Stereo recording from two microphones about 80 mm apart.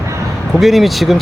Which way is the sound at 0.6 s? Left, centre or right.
Centre.